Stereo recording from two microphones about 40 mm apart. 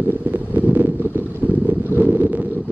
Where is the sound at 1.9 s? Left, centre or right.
Left.